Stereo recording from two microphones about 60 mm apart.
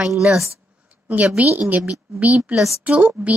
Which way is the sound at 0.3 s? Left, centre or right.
Right.